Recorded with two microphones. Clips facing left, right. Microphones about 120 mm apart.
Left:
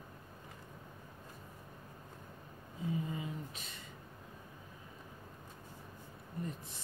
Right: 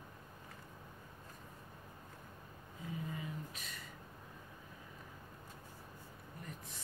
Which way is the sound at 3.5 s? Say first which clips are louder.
Even; 30° left (ahead or behind).